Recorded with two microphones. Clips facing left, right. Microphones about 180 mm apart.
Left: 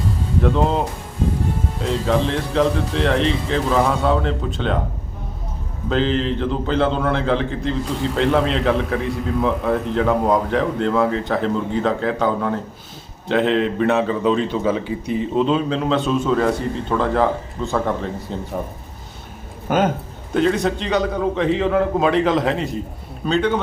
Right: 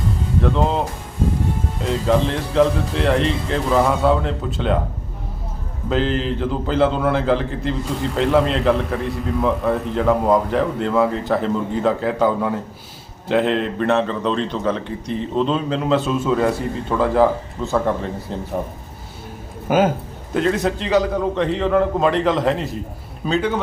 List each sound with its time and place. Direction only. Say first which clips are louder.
0.4 s a man's voice: left 1 dB; centre (ahead or behind)
5.9 s a man's voice: left 1 dB; 5° right (ahead or behind)
19.6 s a man's voice: right 2 dB; 5° right (ahead or behind)